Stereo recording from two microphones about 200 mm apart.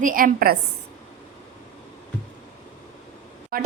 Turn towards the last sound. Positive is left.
turn(degrees=-45)  # may be behind; listen again after turning